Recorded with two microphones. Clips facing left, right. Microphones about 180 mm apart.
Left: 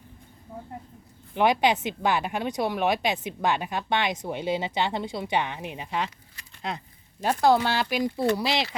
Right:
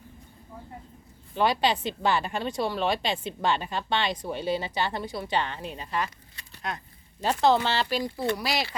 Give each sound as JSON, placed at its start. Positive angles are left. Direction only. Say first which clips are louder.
{"t": 1.3, "sound": "a woman's voice", "louder": "left 2 dB", "side_deg": 15}
{"t": 7.2, "sound": "a woman's voice", "louder": "left 1 dB", "side_deg": 10}
{"t": 8.1, "sound": "speech", "louder": "left 3 dB", "side_deg": 30}